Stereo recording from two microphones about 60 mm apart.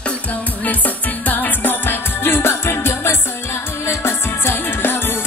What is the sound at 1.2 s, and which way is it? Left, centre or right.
Music, left.